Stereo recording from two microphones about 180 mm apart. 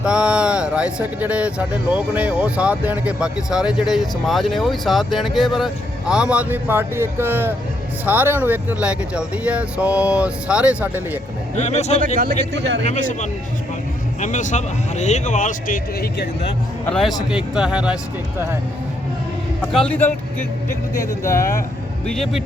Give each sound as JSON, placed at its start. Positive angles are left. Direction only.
{"t": 0.0, "sound": "speech", "side_deg": -5}
{"t": 11.5, "sound": "speech", "side_deg": 40}
{"t": 11.9, "sound": "speech", "side_deg": -50}
{"t": 12.5, "sound": "speech", "side_deg": -75}
{"t": 12.8, "sound": "speech", "side_deg": 45}
{"t": 16.8, "sound": "speech", "side_deg": 0}
{"t": 19.7, "sound": "speech", "side_deg": 5}
{"t": 22.0, "sound": "speech", "side_deg": 5}